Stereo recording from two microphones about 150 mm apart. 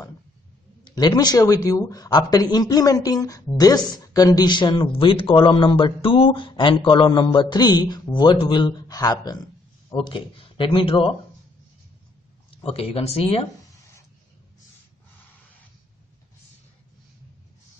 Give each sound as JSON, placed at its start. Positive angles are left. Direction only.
{"t": 0.8, "sound": "a man's voice", "side_deg": 30}
{"t": 12.6, "sound": "a man's voice", "side_deg": 40}